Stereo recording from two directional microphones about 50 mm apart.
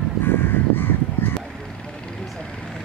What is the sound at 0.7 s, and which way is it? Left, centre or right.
Crow, left.